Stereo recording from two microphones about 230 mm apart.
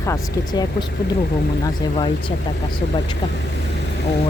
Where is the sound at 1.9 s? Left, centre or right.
Left.